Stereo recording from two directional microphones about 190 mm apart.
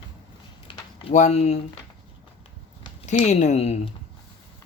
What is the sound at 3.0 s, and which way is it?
Speech, 35° left (ahead or behind).